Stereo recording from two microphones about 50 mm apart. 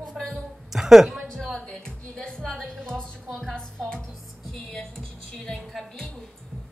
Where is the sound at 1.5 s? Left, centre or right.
Centre.